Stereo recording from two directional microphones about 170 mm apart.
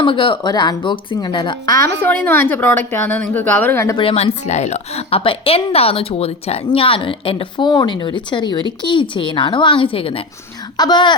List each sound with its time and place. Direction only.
0.0 s a woman's voice: 30° left (ahead or behind)
2.0 s a woman's voice: 10° left (ahead or behind)
3.9 s a woman's voice: 35° left (ahead or behind)